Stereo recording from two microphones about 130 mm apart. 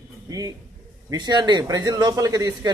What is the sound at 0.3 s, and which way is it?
A man's voice, 25° right (ahead or behind).